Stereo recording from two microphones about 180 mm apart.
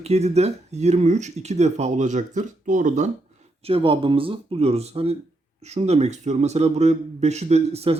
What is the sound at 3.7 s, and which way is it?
A man's voice, 30° right (ahead or behind).